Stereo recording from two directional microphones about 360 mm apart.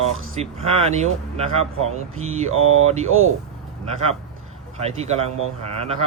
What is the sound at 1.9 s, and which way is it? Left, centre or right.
Speech, right.